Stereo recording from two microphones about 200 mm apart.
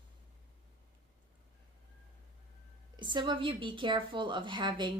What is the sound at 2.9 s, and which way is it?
Speech, 25° right (ahead or behind).